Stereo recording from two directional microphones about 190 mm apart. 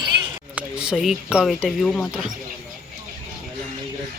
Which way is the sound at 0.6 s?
5° right (ahead or behind).